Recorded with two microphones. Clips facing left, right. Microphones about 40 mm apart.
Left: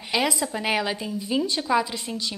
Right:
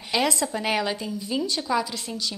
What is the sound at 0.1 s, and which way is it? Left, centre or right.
A woman's voice, centre.